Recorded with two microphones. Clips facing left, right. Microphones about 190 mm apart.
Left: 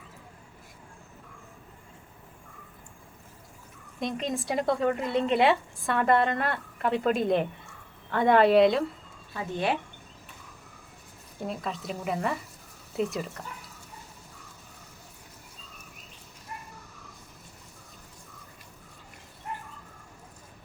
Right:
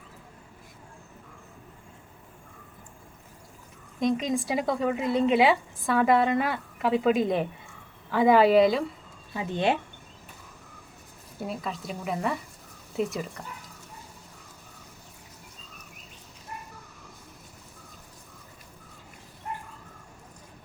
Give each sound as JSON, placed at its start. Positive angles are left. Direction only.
{"t": 4.0, "sound": "speech", "side_deg": 0}
{"t": 9.3, "sound": "speech", "side_deg": -20}
{"t": 11.4, "sound": "speech", "side_deg": 0}